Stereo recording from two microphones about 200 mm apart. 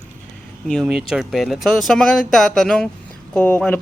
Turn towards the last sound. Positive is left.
turn(degrees=10)  # may be behind; listen again after turning